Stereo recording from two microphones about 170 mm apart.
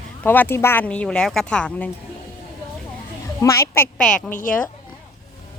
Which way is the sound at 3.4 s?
15° left (ahead or behind).